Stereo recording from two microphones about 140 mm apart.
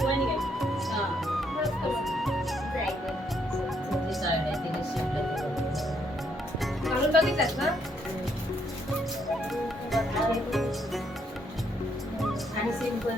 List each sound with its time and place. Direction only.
0.0 s music: centre (ahead or behind)
3.9 s music: centre (ahead or behind)
6.6 s music: centre (ahead or behind)
9.5 s music: centre (ahead or behind)